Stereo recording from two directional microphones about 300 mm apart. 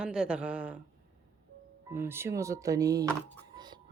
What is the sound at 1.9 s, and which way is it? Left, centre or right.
Speech, centre.